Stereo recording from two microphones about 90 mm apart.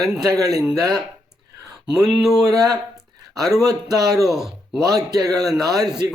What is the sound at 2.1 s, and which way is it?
Speech, 5° right (ahead or behind).